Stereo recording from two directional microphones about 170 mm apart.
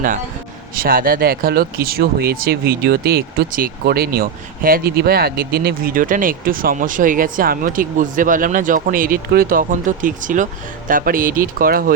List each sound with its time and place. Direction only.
0.8 s speech: 55° right (ahead or behind)